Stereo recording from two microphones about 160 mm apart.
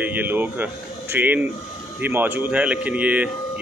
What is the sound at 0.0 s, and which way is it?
Speech, 10° right (ahead or behind).